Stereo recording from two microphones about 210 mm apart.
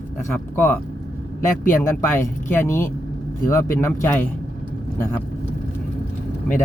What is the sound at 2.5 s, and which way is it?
Speech, 10° left (ahead or behind).